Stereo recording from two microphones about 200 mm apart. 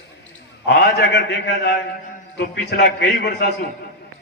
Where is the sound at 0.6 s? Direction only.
55° left (ahead or behind).